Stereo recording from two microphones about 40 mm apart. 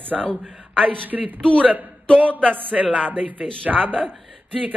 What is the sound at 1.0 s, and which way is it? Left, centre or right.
A woman's voice, right.